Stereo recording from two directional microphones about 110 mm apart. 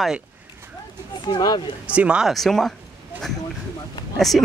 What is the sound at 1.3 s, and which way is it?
Speech, 40° left (ahead or behind).